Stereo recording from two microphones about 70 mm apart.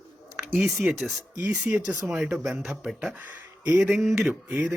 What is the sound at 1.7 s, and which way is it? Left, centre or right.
Speech, right.